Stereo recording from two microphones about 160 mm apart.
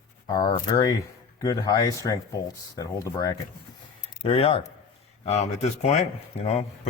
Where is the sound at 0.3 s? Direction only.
25° left (ahead or behind).